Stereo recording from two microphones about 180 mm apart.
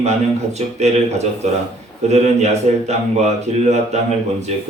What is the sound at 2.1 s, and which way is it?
A man's voice, 40° right (ahead or behind).